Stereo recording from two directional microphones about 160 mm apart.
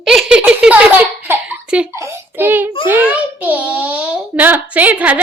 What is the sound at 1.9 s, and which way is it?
A child's voice, 15° right (ahead or behind).